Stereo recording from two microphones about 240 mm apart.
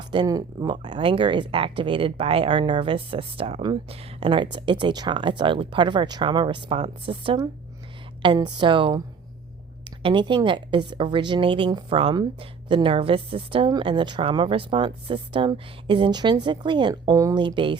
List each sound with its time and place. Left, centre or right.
0.1 s a woman's voice: centre